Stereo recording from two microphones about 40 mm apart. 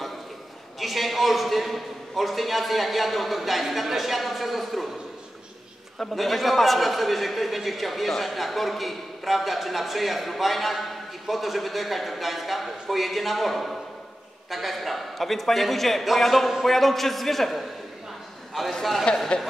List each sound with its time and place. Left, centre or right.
0.7 s a man's voice: centre
6.1 s a man's voice: centre
18.7 s a man's voice: centre
19.3 s speech: left